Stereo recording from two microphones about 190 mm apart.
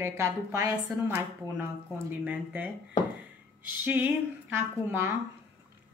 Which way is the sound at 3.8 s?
10° right (ahead or behind).